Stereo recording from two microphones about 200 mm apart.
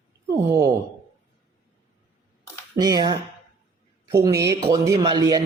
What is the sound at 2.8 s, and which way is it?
A man's voice, 20° right (ahead or behind).